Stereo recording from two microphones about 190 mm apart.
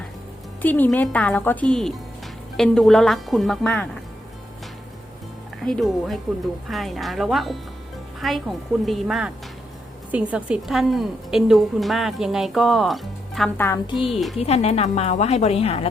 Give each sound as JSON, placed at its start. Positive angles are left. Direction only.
{"t": 0.6, "sound": "a woman's voice", "side_deg": 10}
{"t": 5.6, "sound": "a woman's voice", "side_deg": 0}
{"t": 13.9, "sound": "a woman's voice", "side_deg": 30}